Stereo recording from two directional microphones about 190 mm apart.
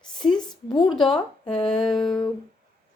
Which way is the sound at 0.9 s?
Centre (ahead or behind).